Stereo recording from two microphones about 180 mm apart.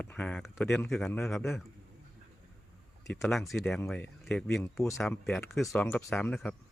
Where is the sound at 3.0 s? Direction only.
15° left (ahead or behind).